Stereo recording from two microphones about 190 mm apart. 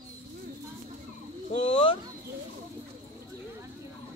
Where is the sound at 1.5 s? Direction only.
30° left (ahead or behind).